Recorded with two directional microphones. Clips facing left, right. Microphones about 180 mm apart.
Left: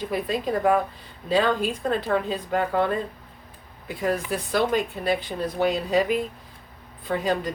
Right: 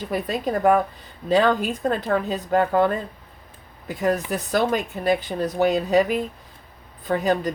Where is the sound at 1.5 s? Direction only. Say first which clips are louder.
Right 3 dB; 45° right (ahead or behind).